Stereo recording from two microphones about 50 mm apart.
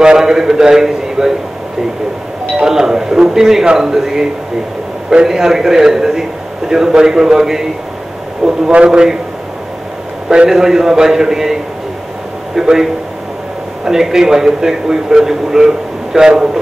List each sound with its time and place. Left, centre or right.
0.0 s a man's voice: centre
2.6 s a man's voice: centre
10.3 s a man's voice: centre
12.5 s a man's voice: centre
13.8 s a man's voice: centre